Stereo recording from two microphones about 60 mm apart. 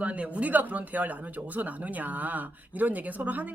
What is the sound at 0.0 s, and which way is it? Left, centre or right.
Speech, right.